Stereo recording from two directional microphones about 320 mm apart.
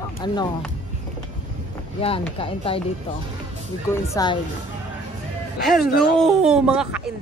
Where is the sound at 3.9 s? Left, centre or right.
Centre.